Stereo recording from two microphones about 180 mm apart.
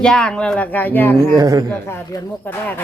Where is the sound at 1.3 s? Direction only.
20° right (ahead or behind).